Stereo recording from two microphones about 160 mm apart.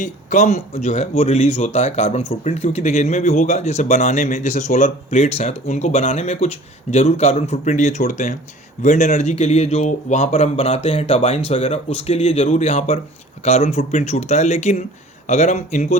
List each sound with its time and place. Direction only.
0.0 s speech: 50° left (ahead or behind)